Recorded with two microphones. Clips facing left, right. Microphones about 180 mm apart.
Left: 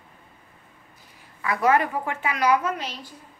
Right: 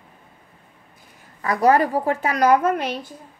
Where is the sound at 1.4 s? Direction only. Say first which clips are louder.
Right 4 dB; 40° right (ahead or behind); by 3.1 s 55° right (ahead or behind).